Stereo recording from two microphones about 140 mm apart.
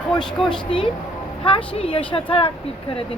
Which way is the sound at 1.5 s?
40° left (ahead or behind).